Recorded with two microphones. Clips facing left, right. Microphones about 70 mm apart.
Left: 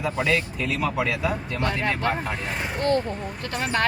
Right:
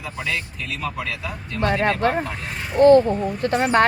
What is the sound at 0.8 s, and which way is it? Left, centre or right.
Speech, centre.